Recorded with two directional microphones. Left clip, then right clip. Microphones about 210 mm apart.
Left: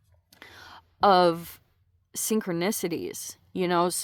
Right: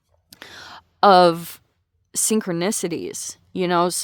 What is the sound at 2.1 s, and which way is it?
Speech, 30° right (ahead or behind).